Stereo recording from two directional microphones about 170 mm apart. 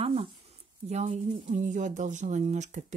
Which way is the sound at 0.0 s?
35° right (ahead or behind).